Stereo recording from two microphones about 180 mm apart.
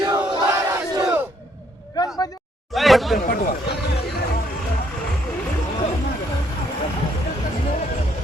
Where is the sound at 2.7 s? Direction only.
Centre (ahead or behind).